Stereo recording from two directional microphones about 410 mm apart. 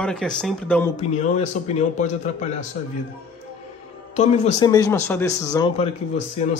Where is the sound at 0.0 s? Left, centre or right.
Centre.